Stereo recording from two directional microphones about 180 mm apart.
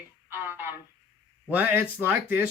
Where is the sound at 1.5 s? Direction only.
10° right (ahead or behind).